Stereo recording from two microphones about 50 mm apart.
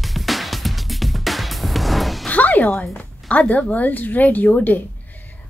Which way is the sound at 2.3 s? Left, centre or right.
Left.